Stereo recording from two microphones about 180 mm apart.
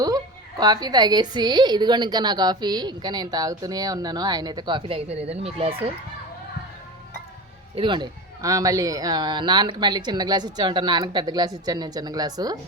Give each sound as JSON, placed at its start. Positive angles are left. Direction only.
{"t": 0.6, "sound": "a woman's voice", "side_deg": -20}
{"t": 7.8, "sound": "a woman's voice", "side_deg": -25}